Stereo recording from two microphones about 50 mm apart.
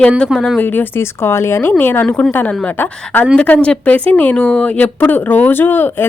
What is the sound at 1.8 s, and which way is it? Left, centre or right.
Speech, left.